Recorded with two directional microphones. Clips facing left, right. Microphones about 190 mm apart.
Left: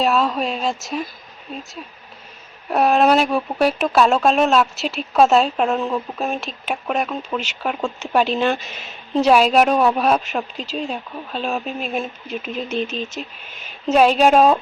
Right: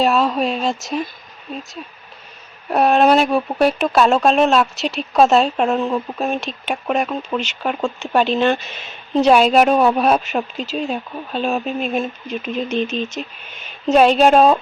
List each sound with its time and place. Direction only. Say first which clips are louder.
0.0 s speech: right 2 dB; centre (ahead or behind)
2.6 s speech: right 2 dB; centre (ahead or behind)